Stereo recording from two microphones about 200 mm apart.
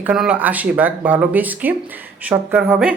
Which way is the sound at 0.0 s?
5° right (ahead or behind).